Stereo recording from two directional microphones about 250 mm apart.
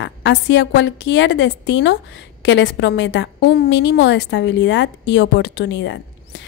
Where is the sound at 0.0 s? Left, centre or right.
Left.